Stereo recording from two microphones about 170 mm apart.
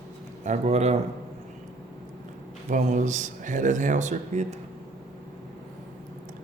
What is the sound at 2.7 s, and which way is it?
Speech, 45° right (ahead or behind).